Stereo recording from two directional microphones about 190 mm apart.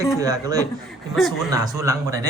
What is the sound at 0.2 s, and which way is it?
Speech, 20° right (ahead or behind).